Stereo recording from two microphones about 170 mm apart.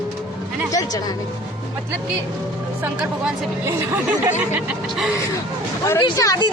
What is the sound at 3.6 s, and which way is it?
Music, 15° right (ahead or behind).